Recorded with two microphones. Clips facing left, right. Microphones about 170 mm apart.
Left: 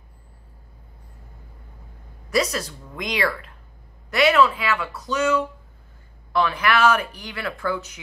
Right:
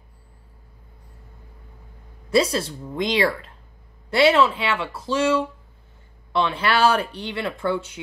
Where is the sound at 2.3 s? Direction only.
30° right (ahead or behind).